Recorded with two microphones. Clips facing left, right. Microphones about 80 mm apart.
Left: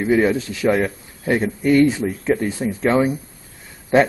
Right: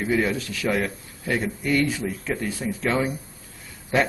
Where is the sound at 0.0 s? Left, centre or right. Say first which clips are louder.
Left 6 dB; left.